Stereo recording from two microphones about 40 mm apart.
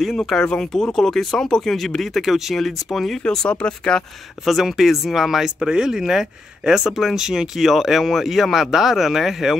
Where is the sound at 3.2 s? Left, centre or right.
Left.